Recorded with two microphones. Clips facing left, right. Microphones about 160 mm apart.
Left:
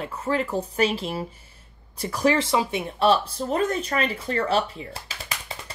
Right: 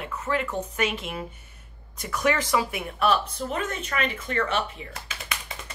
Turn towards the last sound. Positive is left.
turn(degrees=30)  # may be behind; listen again after turning